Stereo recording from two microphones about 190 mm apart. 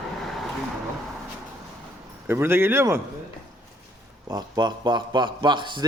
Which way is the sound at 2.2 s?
10° right (ahead or behind).